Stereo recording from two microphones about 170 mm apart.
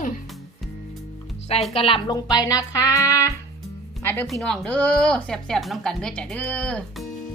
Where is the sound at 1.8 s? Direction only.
30° left (ahead or behind).